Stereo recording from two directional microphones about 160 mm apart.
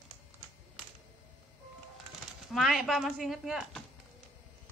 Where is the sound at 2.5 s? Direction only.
Centre (ahead or behind).